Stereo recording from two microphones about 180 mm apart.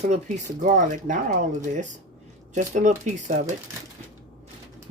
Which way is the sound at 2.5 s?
45° right (ahead or behind).